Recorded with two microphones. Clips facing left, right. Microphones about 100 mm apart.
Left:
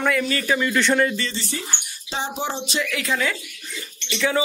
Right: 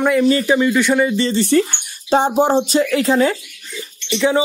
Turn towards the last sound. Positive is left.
turn(degrees=-25)  # may be behind; listen again after turning